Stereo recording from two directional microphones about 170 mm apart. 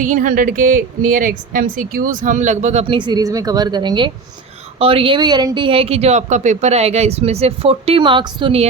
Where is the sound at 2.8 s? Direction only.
30° right (ahead or behind).